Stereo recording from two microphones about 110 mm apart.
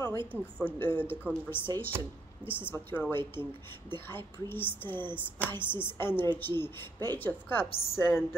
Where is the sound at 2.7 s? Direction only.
20° left (ahead or behind).